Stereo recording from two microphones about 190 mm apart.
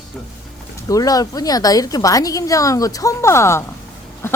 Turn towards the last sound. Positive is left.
turn(degrees=15)  # may be behind; listen again after turning